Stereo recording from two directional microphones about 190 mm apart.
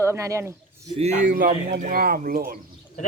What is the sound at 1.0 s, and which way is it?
Speech, 40° right (ahead or behind).